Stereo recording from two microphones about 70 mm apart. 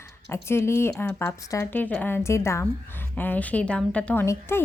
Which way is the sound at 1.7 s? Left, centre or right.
Left.